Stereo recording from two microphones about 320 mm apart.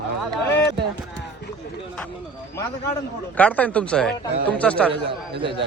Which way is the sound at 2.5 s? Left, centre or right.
Centre.